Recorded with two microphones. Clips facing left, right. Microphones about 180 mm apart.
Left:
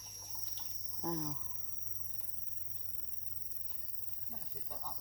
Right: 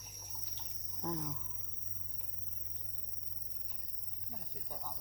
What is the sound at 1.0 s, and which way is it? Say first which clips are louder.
Speech: left 1 dB; centre (ahead or behind).